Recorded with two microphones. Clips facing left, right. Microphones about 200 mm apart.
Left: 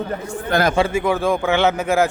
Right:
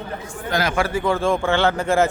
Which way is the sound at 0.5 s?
50° left (ahead or behind).